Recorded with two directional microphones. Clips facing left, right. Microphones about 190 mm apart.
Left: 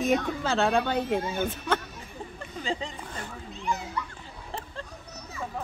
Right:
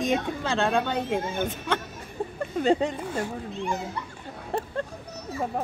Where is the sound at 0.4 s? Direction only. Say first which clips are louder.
Even; 5° left (ahead or behind).